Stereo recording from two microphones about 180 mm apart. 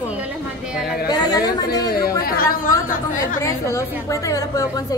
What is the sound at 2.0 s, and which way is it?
Speech, 55° left (ahead or behind).